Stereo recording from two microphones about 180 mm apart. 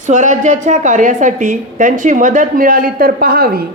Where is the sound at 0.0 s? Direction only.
45° right (ahead or behind).